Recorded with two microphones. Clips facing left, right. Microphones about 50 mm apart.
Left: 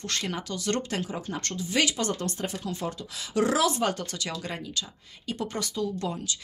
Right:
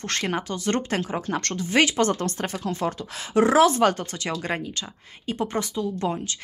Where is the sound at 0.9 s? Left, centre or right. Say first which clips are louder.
Right 6 dB; right.